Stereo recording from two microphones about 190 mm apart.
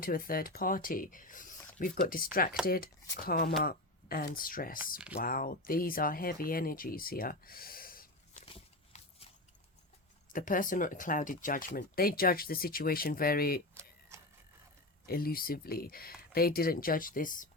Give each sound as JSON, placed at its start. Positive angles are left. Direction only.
{"t": 0.0, "sound": "speech", "side_deg": 50}
{"t": 8.4, "sound": "a sound", "side_deg": 30}
{"t": 10.3, "sound": "speech", "side_deg": 45}
{"t": 15.0, "sound": "speech", "side_deg": 50}